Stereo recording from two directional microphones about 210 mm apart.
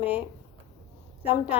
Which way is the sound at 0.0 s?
10° right (ahead or behind).